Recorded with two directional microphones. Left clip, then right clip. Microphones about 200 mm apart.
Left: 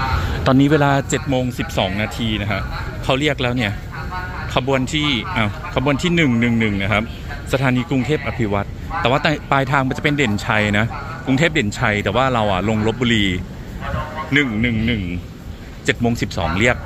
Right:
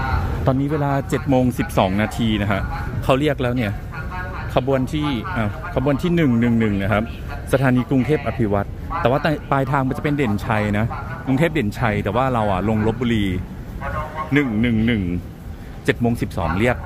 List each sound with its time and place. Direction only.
0.4 s speech: 5° left (ahead or behind)
0.8 s speech: 5° right (ahead or behind)
1.3 s speech: 25° right (ahead or behind)